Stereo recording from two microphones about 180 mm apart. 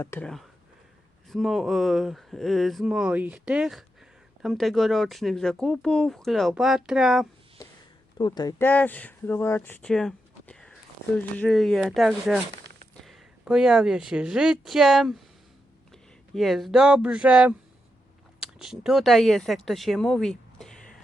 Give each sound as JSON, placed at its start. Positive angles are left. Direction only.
{"t": 0.0, "sound": "speech", "side_deg": 10}
{"t": 8.2, "sound": "speech", "side_deg": 20}
{"t": 16.3, "sound": "speech", "side_deg": 0}